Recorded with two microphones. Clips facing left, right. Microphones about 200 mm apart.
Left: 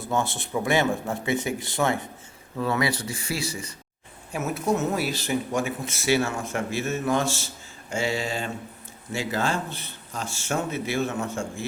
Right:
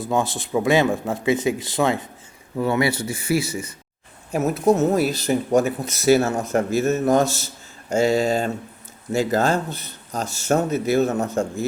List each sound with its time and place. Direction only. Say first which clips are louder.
0.0 s speech: right 4 dB; 15° right (ahead or behind)
4.3 s speech: right 7 dB; 35° right (ahead or behind)